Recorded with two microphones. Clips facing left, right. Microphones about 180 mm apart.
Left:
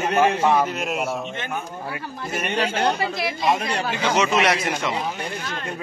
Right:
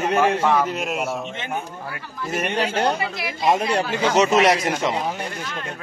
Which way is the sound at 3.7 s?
40° right (ahead or behind).